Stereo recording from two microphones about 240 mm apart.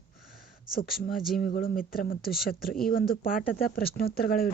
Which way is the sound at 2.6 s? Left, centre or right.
Centre.